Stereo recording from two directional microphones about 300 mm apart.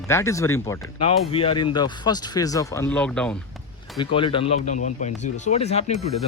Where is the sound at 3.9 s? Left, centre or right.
Centre.